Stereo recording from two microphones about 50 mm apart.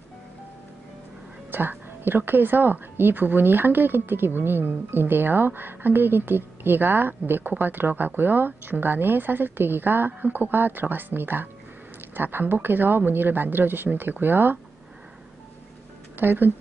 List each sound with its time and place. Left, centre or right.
1.5 s a woman's voice: right
16.2 s a woman's voice: right